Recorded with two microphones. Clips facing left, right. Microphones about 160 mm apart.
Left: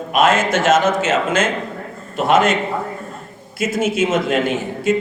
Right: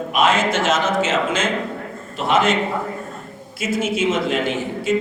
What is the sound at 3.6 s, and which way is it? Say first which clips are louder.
Speech: left 3 dB; 50° left (ahead or behind).